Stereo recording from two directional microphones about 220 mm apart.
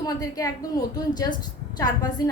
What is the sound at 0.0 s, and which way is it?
A woman's voice, 15° left (ahead or behind).